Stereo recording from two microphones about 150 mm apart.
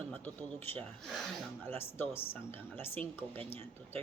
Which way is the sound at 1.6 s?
15° left (ahead or behind).